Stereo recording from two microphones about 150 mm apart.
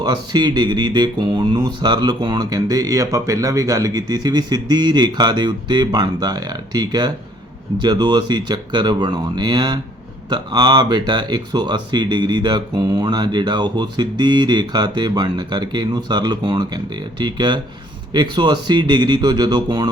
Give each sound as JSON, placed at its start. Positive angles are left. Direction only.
{"t": 0.0, "sound": "speech", "side_deg": -30}